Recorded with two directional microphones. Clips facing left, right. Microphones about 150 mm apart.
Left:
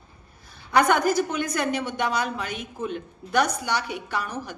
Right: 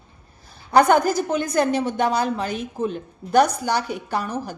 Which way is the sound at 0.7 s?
35° right (ahead or behind).